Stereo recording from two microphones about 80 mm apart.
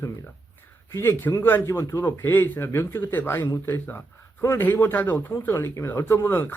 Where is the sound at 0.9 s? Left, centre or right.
Left.